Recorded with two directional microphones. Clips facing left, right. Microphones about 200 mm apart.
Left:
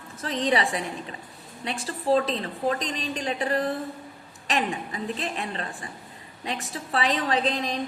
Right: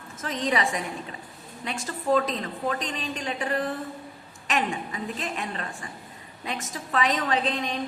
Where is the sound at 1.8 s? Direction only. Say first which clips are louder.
Left 1 dB; 30° left (ahead or behind).